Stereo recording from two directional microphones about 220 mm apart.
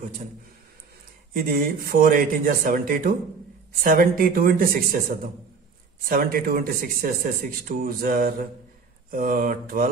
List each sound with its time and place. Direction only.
1.3 s speech: 40° right (ahead or behind)